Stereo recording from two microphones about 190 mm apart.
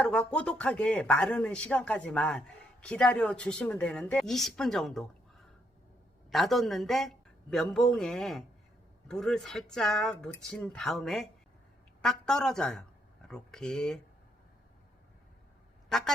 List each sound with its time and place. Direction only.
0.0 s speech: 5° left (ahead or behind)
6.3 s speech: centre (ahead or behind)
15.9 s music: 5° left (ahead or behind)